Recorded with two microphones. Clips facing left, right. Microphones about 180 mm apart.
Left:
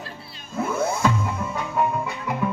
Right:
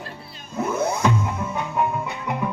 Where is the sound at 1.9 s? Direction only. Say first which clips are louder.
Left 1 dB; centre (ahead or behind).